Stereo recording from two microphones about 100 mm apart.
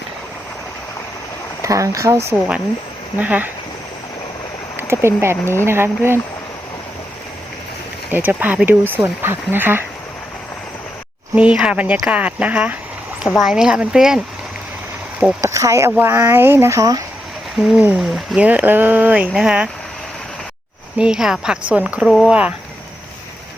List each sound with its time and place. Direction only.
1.6 s speech: 35° right (ahead or behind)
3.2 s speech: 15° right (ahead or behind)
4.8 s speech: 25° right (ahead or behind)
8.1 s speech: 20° right (ahead or behind)
11.3 s speech: 10° right (ahead or behind)
13.2 s speech: 5° right (ahead or behind)
15.4 s speech: 30° right (ahead or behind)
17.6 s speech: 10° right (ahead or behind)
18.3 s speech: 15° right (ahead or behind)
21.0 s speech: 5° right (ahead or behind)
22.0 s speech: 5° left (ahead or behind)
22.3 s speech: 10° right (ahead or behind)